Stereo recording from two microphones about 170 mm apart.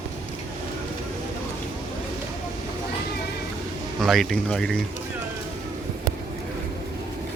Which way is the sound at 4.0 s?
Centre (ahead or behind).